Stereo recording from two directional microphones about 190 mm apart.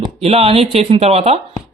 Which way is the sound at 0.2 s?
30° right (ahead or behind).